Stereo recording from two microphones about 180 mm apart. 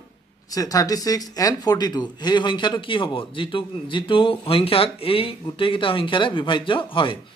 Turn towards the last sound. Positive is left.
turn(degrees=30)  # may be behind; listen again after turning